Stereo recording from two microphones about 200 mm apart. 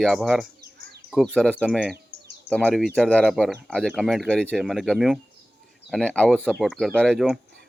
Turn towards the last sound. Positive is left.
turn(degrees=0)  # may be behind; listen again after turning